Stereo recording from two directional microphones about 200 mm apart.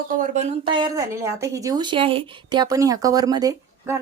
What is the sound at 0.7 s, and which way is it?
Speech, 20° right (ahead or behind).